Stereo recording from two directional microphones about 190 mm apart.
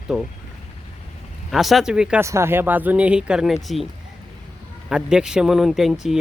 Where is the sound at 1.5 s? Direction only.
Centre (ahead or behind).